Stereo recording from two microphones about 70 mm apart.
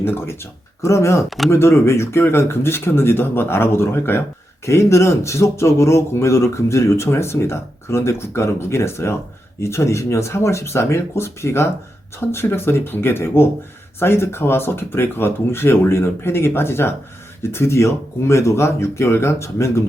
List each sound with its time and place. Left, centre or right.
0.0 s speech: left
4.6 s speech: left